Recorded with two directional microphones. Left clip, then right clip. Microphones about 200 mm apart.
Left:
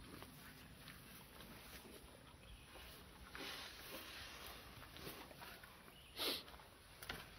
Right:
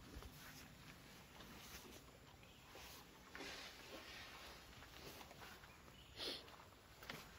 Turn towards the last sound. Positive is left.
turn(degrees=20)  # may be behind; listen again after turning